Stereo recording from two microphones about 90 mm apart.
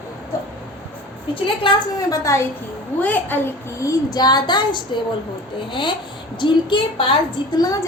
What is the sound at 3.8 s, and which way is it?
Speech, 45° left (ahead or behind).